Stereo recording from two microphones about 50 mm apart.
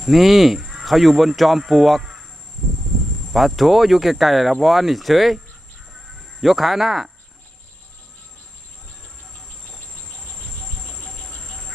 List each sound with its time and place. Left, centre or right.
0.0 s speech: centre
3.3 s speech: centre
6.4 s speech: centre
10.8 s insect: centre